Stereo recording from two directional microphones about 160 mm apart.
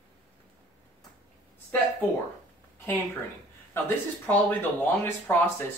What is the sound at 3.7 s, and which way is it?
Speech, 15° left (ahead or behind).